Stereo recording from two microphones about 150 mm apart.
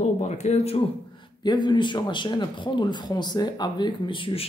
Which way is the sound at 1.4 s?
30° left (ahead or behind).